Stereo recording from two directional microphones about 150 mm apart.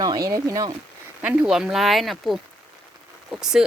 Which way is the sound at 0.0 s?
25° right (ahead or behind).